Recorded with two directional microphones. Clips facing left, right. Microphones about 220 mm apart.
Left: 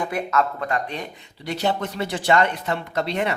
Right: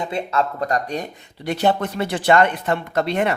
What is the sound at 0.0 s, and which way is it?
A man's voice, 25° right (ahead or behind).